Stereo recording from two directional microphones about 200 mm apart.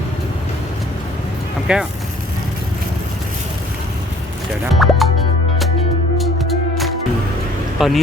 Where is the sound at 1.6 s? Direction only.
5° right (ahead or behind).